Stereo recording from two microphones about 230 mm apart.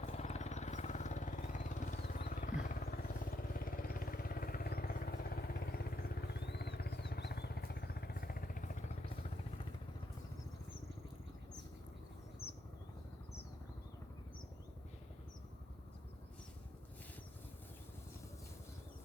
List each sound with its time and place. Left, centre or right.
0.0 s vehicle: left